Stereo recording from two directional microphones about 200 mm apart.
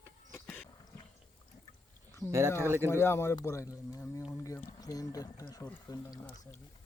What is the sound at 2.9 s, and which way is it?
Speech, 10° left (ahead or behind).